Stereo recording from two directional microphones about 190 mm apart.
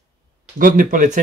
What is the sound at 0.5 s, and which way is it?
Speech, 45° right (ahead or behind).